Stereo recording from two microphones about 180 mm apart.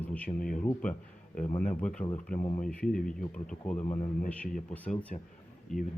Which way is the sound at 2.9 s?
5° left (ahead or behind).